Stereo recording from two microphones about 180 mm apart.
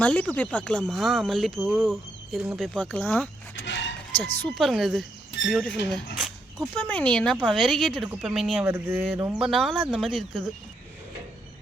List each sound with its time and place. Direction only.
0.0 s speech: 10° left (ahead or behind)
3.5 s chicken: 85° left
4.4 s speech: centre (ahead or behind)
6.1 s dog: centre (ahead or behind)
6.7 s speech: 10° left (ahead or behind)